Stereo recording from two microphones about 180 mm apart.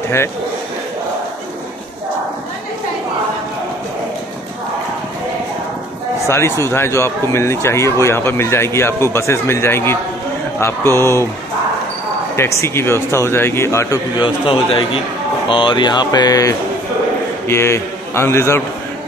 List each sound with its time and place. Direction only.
6.2 s speech: 15° left (ahead or behind)
12.4 s a man's voice: 15° left (ahead or behind)